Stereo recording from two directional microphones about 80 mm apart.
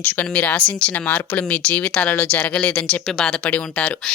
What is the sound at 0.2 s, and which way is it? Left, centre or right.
A woman's voice, centre.